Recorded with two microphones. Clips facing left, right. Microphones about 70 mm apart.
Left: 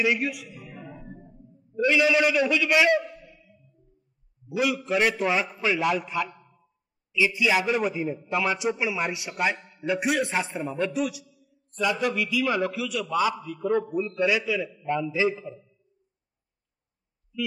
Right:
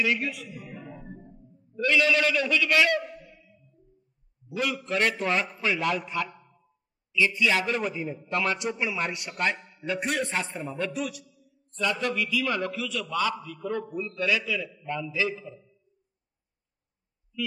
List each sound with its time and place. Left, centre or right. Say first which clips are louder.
0.0 s a man's voice: left 2 dB; centre
1.8 s a man's voice: left 2 dB; centre
4.8 s a man's voice: even; centre